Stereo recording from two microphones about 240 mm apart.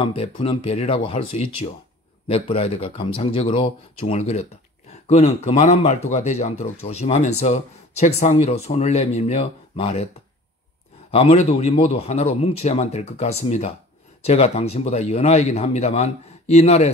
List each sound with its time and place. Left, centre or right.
0.0 s a man's voice: left
11.1 s a man's voice: left